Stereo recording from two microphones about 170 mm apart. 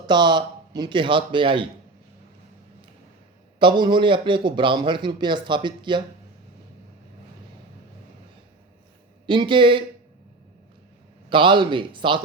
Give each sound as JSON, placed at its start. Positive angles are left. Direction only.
{"t": 0.1, "sound": "a man's voice", "side_deg": -25}
{"t": 3.6, "sound": "a man's voice", "side_deg": -25}
{"t": 9.2, "sound": "a man's voice", "side_deg": -30}
{"t": 11.3, "sound": "a man's voice", "side_deg": -30}